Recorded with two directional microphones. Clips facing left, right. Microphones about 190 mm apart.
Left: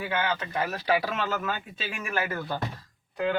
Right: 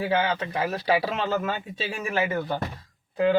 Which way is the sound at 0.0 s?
30° right (ahead or behind).